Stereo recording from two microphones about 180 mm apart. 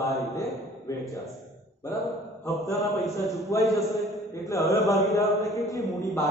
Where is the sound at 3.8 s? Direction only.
Centre (ahead or behind).